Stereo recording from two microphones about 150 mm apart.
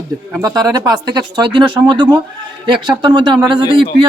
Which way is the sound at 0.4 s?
25° right (ahead or behind).